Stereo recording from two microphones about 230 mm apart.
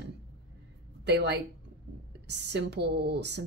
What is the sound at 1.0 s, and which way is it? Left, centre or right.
A woman's voice, right.